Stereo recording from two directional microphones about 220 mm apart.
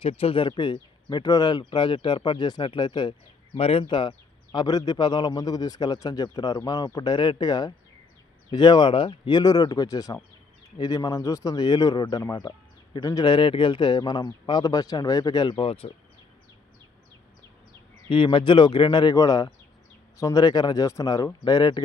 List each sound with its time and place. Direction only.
0.0 s speech: 25° left (ahead or behind)
18.1 s speech: 20° left (ahead or behind)